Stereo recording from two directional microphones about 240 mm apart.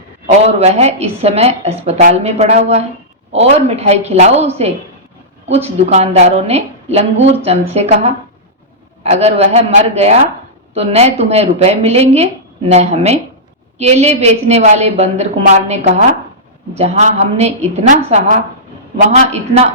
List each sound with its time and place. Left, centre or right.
0.3 s a woman's voice: right